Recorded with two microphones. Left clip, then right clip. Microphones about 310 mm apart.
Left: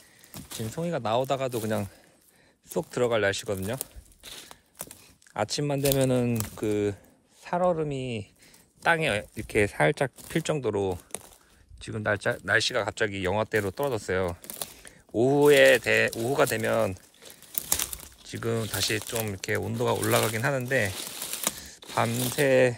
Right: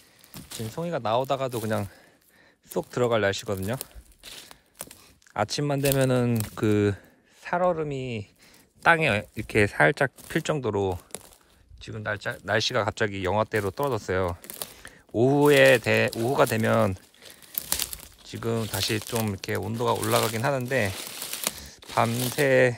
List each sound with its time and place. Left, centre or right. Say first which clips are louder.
0.3 s a sound: even; centre
0.6 s speech: right 1 dB; centre
2.9 s speech: right 1 dB; centre
4.2 s a sound: even; centre
5.3 s speech: right 2 dB; right
11.8 s speech: left 3 dB; centre
12.5 s speech: right 3 dB; centre
14.4 s a sound: even; centre
14.8 s speech: right 2 dB; right
17.2 s crumpling: right 1 dB; centre
18.2 s speech: right 1 dB; centre
20.9 s a sound: right 1 dB; centre
21.9 s speech: right 2 dB; centre